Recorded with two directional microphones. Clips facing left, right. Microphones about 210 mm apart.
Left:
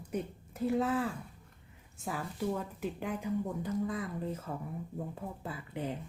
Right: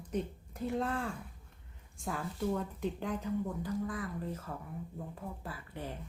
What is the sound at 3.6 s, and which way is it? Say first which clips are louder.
Speech: left 2 dB; 20° left (ahead or behind).